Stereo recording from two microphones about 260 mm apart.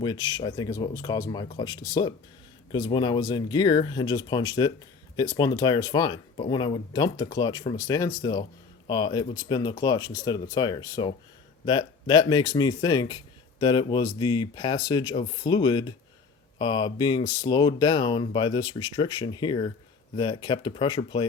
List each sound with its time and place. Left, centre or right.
0.0 s speech: centre